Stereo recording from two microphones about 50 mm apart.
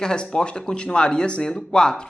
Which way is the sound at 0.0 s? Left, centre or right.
Centre.